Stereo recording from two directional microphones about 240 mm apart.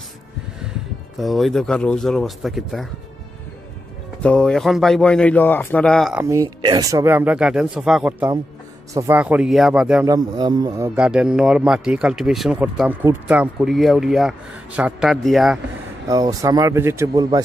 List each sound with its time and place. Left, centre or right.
1.2 s speech: centre
4.2 s speech: centre
6.2 s speech: centre
10.0 s speech: centre
11.0 s speech: centre
16.1 s speech: centre